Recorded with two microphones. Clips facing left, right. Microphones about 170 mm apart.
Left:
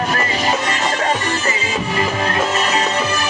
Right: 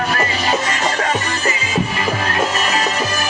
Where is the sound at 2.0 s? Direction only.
25° left (ahead or behind).